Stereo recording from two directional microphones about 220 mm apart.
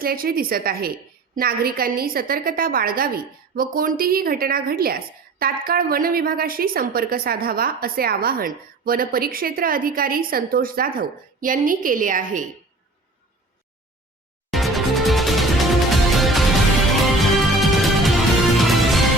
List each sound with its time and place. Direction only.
0.0 s a woman's voice: 40° right (ahead or behind)
14.5 s music: centre (ahead or behind)